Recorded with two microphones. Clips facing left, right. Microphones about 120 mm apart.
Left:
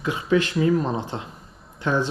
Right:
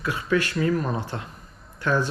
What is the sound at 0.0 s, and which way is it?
Speech, 20° left (ahead or behind).